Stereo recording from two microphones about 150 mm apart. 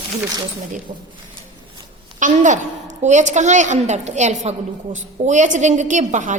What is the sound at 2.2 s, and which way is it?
A woman's voice, 55° right (ahead or behind).